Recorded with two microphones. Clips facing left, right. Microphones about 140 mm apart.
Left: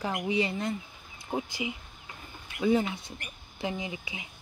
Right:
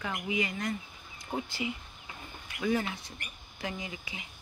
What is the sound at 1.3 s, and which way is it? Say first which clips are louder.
Speech: left 2 dB; 15° left (ahead or behind).